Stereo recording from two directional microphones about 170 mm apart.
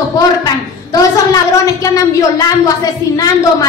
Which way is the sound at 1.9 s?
20° left (ahead or behind).